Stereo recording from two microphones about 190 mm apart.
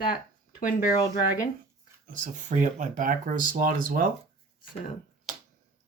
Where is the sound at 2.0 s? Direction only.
40° right (ahead or behind).